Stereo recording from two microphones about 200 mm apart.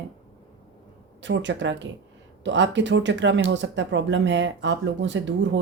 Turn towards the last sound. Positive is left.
turn(degrees=-65)  # may be behind; listen again after turning